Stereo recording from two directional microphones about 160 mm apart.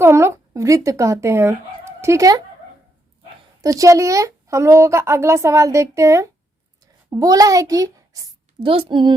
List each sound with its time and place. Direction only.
0.0 s speech: 15° right (ahead or behind)
3.6 s a child's voice: 20° right (ahead or behind)
8.6 s speech: 35° right (ahead or behind)